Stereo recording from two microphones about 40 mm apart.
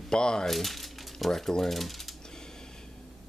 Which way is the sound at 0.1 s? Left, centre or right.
Centre.